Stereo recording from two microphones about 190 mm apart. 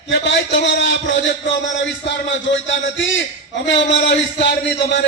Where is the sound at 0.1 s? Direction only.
70° left (ahead or behind).